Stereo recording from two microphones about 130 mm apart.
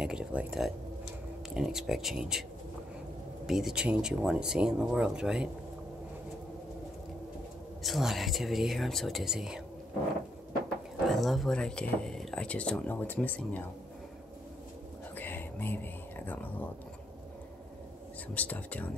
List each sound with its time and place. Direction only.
0.0 s speech: 5° right (ahead or behind)
3.4 s speech: 5° right (ahead or behind)
7.8 s speech: centre (ahead or behind)
11.1 s speech: centre (ahead or behind)
15.1 s whispering: 15° left (ahead or behind)
18.3 s speech: 10° left (ahead or behind)